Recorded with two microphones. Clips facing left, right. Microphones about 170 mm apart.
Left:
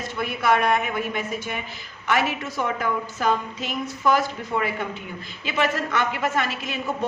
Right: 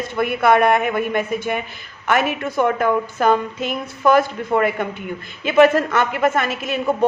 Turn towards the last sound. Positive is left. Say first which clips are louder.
# right 7 dB
turn(degrees=-50)  # may be behind; listen again after turning